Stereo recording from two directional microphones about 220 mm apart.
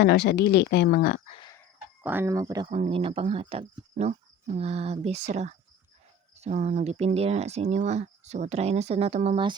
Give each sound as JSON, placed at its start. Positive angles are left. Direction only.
{"t": 0.0, "sound": "speech", "side_deg": 50}
{"t": 1.3, "sound": "a sound", "side_deg": 20}
{"t": 2.0, "sound": "speech", "side_deg": -10}